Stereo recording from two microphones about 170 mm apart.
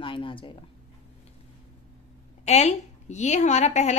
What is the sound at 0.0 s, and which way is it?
Speech, 30° left (ahead or behind).